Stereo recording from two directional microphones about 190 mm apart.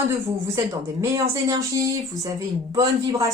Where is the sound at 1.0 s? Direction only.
15° right (ahead or behind).